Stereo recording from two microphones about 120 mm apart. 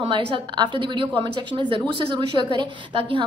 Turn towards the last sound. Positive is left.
turn(degrees=-45)  # may be behind; listen again after turning